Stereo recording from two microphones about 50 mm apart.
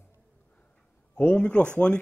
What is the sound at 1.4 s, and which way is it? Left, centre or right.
Speech, left.